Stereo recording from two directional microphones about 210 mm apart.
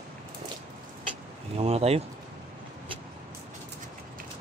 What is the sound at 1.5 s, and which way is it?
Speech, 30° right (ahead or behind).